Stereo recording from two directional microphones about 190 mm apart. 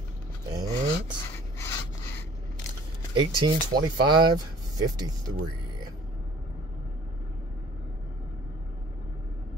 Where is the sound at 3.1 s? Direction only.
25° right (ahead or behind).